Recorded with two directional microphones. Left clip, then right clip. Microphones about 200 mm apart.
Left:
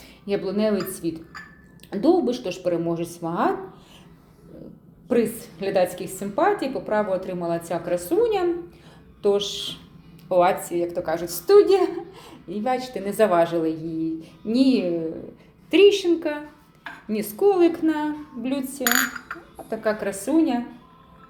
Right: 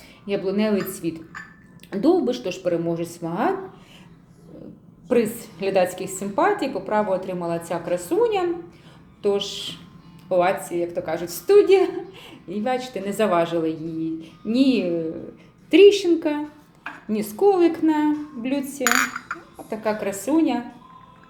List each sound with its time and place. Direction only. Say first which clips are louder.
0.3 s a woman's voice: even; 5° left (ahead or behind)
5.0 s a woman's voice: right 1 dB; centre (ahead or behind)
15.7 s a woman's voice: right 3 dB; 10° right (ahead or behind)
18.8 s a woman's voice: right 2 dB; 15° right (ahead or behind)
19.3 s a woman's voice: right 1 dB; centre (ahead or behind)